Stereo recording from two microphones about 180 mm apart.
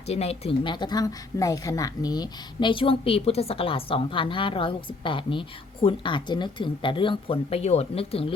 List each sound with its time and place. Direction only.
0.1 s speech: 35° left (ahead or behind)